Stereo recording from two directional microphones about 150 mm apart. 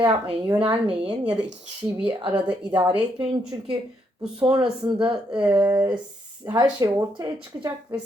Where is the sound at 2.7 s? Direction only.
30° right (ahead or behind).